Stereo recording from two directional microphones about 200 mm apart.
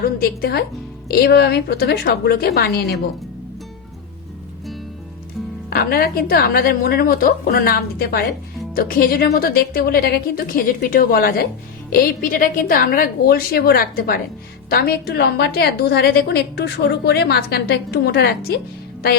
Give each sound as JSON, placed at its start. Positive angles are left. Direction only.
{"t": 0.2, "sound": "a woman's voice", "side_deg": 50}
{"t": 5.7, "sound": "a woman's voice", "side_deg": 50}